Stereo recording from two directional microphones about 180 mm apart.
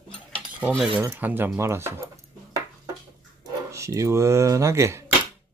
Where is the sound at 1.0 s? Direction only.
10° right (ahead or behind).